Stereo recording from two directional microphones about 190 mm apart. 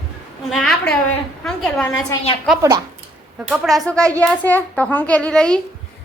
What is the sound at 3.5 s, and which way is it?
A child's voice, centre (ahead or behind).